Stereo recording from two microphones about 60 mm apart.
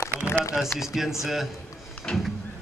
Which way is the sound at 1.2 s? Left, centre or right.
Centre.